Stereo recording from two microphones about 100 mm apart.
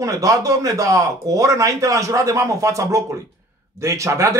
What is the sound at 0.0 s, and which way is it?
Speech, 35° right (ahead or behind).